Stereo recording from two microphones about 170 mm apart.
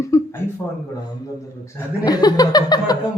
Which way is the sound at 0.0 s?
15° left (ahead or behind).